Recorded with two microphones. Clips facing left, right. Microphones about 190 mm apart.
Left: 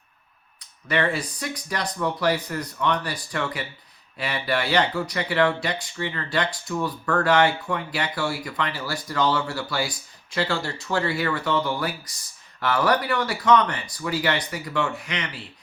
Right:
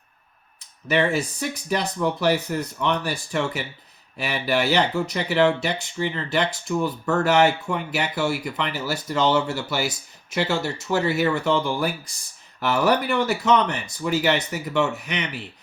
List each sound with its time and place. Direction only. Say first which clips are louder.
0.9 s speech: right 3 dB; 25° right (ahead or behind)